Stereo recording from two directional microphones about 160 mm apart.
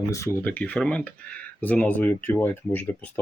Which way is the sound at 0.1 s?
15° left (ahead or behind).